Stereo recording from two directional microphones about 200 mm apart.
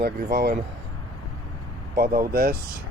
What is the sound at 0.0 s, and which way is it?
Speech, 50° right (ahead or behind).